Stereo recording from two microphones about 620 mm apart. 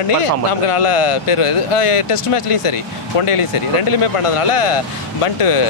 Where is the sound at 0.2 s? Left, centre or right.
Left.